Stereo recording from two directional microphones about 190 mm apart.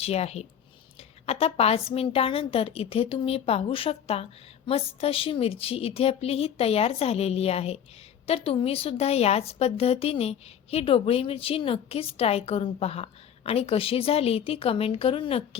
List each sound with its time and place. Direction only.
0.0 s a woman's voice: 35° left (ahead or behind)